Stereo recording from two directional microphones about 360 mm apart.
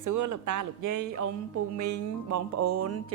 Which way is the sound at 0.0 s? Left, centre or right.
Right.